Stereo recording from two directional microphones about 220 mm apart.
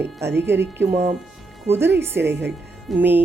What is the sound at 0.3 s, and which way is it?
Speech, 10° right (ahead or behind).